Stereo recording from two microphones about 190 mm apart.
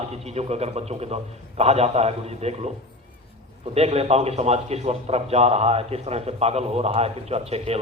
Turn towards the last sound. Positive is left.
turn(degrees=-35)  # may be behind; listen again after turning